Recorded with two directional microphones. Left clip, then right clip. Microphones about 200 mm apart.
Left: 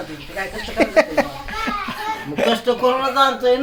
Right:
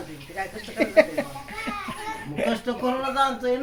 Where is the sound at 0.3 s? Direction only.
15° left (ahead or behind).